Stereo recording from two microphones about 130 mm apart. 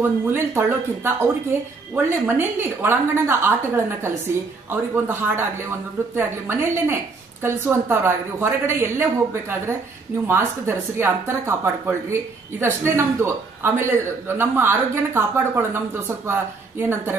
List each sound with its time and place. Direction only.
0.3 s a woman's voice: 20° right (ahead or behind)